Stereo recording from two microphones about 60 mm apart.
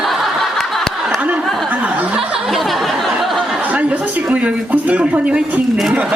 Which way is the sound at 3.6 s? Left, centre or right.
Right.